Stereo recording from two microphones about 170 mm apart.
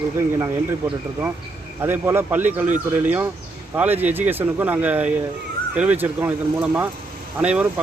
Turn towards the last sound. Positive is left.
turn(degrees=-10)  # may be behind; listen again after turning